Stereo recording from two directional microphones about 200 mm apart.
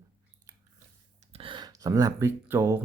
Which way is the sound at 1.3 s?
25° right (ahead or behind).